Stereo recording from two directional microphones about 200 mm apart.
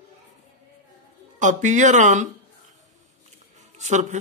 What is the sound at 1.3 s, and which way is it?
Speech, 40° right (ahead or behind).